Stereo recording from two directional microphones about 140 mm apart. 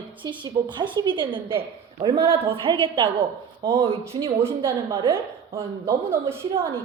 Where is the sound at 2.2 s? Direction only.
20° right (ahead or behind).